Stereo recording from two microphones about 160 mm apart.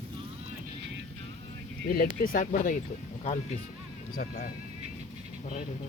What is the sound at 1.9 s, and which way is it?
Speech, 60° left (ahead or behind).